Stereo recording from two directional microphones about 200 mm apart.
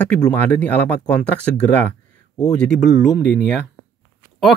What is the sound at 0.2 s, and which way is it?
Speech, 10° left (ahead or behind).